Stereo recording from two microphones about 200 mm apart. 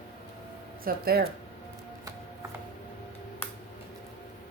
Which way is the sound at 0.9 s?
50° right (ahead or behind).